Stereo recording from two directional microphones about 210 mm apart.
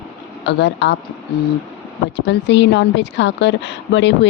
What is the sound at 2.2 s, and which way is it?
Speech, 55° left (ahead or behind).